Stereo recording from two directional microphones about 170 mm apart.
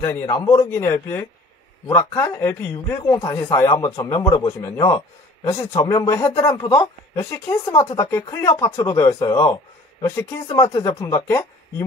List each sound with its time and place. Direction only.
0.0 s a man's voice: 20° left (ahead or behind)
6.6 s a woman's voice: 30° left (ahead or behind)
7.2 s a man's voice: 15° left (ahead or behind)
7.7 s a woman's voice: 30° left (ahead or behind)
8.0 s a man's voice: 20° left (ahead or behind)